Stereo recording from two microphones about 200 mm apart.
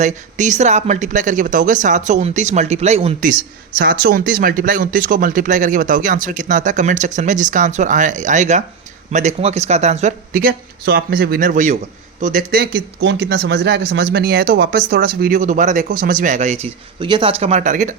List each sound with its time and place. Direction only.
0.0 s speech: 40° right (ahead or behind)
3.8 s speech: 45° right (ahead or behind)